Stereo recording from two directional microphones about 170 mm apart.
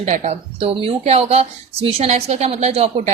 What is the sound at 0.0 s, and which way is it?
A woman's voice, 40° right (ahead or behind).